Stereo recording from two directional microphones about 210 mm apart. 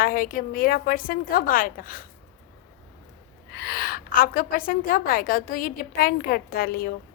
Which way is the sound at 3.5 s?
50° left (ahead or behind).